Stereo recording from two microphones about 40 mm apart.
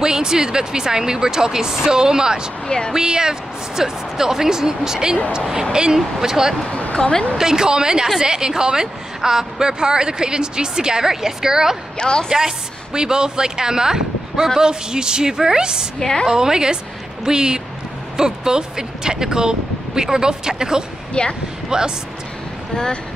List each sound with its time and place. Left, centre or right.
0.0 s speech: centre
6.7 s a sound: left
7.0 s a woman's voice: left
7.3 s a woman's voice: centre
12.0 s a woman's voice: left
12.3 s a woman's voice: centre
16.0 s a woman's voice: centre
16.3 s a woman's voice: centre
21.1 s speech: left
21.6 s speech: centre